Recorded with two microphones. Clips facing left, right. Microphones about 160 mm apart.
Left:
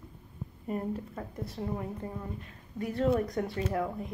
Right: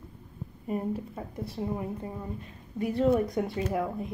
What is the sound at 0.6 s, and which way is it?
Speech, 15° right (ahead or behind).